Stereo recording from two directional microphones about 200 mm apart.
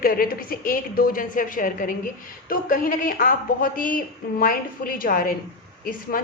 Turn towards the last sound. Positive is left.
turn(degrees=45)  # may be behind; listen again after turning